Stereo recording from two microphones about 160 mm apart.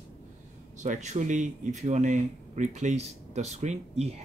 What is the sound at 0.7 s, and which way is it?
Speech, 50° right (ahead or behind).